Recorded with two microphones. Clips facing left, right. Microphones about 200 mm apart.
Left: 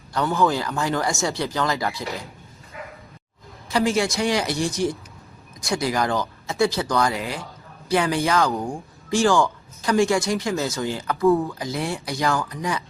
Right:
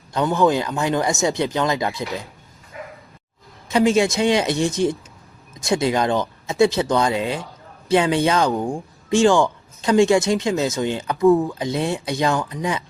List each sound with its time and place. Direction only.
0.1 s speech: 20° right (ahead or behind)
3.7 s speech: 20° right (ahead or behind)